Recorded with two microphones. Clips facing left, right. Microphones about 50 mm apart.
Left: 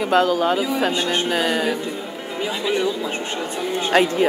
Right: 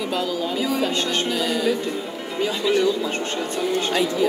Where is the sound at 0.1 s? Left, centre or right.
Left.